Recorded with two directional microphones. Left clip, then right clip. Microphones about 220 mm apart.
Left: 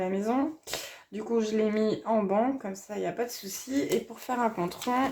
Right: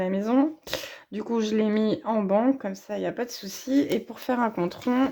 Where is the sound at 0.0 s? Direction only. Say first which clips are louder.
Right 4 dB; 40° right (ahead or behind).